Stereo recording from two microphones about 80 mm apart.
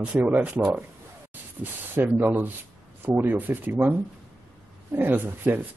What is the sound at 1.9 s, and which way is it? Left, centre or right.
Speech, right.